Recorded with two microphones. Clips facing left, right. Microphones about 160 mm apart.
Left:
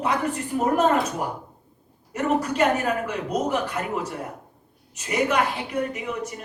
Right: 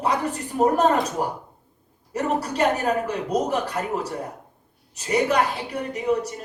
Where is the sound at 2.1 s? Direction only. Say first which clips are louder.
Left 1 dB; 35° right (ahead or behind).